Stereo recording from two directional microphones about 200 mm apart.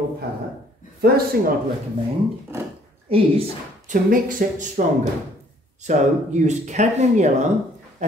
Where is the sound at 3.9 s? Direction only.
45° right (ahead or behind).